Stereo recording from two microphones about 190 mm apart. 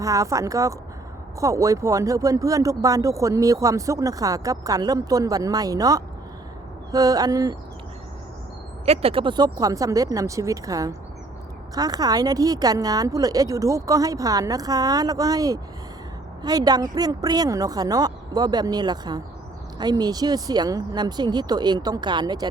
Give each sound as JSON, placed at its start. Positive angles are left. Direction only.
{"t": 0.0, "sound": "a woman's voice", "side_deg": -15}
{"t": 8.9, "sound": "a woman's voice", "side_deg": -30}